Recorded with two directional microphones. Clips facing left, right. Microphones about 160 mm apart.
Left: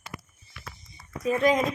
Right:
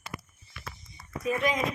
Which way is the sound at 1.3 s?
35° left (ahead or behind).